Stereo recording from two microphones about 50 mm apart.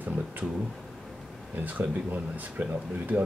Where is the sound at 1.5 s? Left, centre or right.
Right.